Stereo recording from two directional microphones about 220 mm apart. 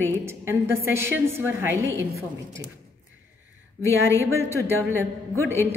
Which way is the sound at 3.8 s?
15° left (ahead or behind).